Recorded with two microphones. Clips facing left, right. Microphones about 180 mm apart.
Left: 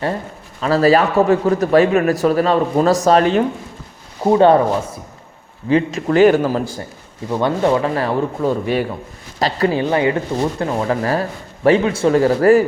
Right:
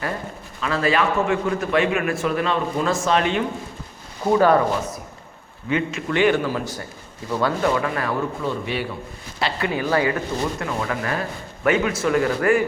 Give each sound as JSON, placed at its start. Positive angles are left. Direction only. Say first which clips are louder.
{"t": 0.6, "sound": "speech", "louder": "left 7 dB", "side_deg": 35}
{"t": 4.2, "sound": "speech", "louder": "left 5 dB", "side_deg": 30}
{"t": 7.3, "sound": "speech", "louder": "left 5 dB", "side_deg": 25}